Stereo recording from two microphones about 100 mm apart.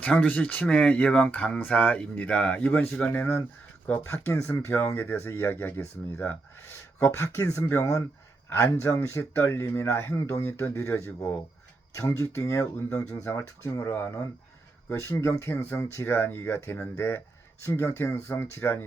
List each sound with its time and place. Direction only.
0.0 s speech: 15° left (ahead or behind)